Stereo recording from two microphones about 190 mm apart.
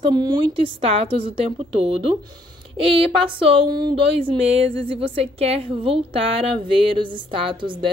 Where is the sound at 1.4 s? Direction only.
30° right (ahead or behind).